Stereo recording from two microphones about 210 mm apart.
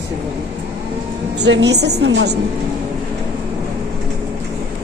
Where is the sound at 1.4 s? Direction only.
55° right (ahead or behind).